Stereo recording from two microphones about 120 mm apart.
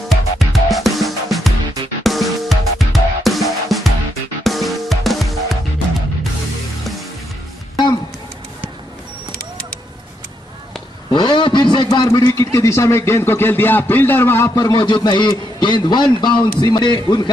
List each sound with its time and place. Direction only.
0.1 s music: centre (ahead or behind)
11.1 s a sound: 40° left (ahead or behind)
12.3 s speech: 25° left (ahead or behind)